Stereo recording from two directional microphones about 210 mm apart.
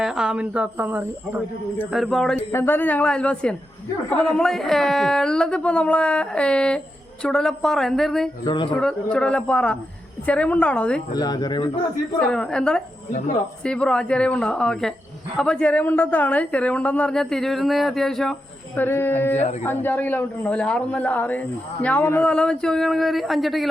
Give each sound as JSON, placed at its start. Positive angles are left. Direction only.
{"t": 0.0, "sound": "a woman's voice", "side_deg": -5}
{"t": 2.5, "sound": "a woman's voice", "side_deg": 10}
{"t": 8.4, "sound": "speech", "side_deg": 20}
{"t": 8.8, "sound": "a woman's voice", "side_deg": 5}
{"t": 11.1, "sound": "speech", "side_deg": 20}
{"t": 12.2, "sound": "a woman's voice", "side_deg": 5}
{"t": 13.1, "sound": "speech", "side_deg": 35}
{"t": 13.7, "sound": "a woman's voice", "side_deg": 5}